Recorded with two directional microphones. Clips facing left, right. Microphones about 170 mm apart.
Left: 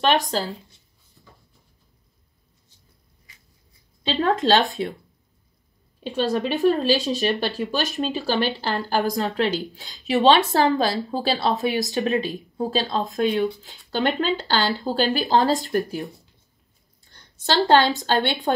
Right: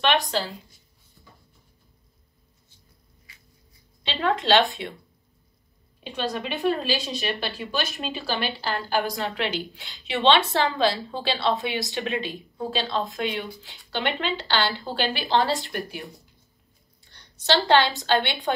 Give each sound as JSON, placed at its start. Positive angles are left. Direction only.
{"t": 0.3, "sound": "speech", "side_deg": 40}
{"t": 4.0, "sound": "speech", "side_deg": 40}
{"t": 6.1, "sound": "speech", "side_deg": 40}
{"t": 17.6, "sound": "a woman's voice", "side_deg": 45}